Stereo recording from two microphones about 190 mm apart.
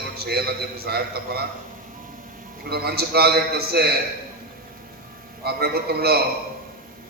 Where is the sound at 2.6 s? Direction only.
55° right (ahead or behind).